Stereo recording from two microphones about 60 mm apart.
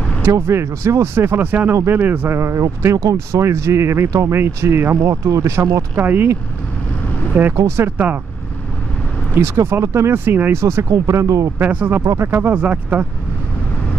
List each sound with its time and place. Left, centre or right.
0.3 s speech: right
2.3 s speech: right
5.9 s speech: right
7.5 s speech: right
9.4 s speech: right
10.5 s speech: right
10.9 s speech: right
11.7 s speech: right
12.0 s speech: right
12.3 s speech: right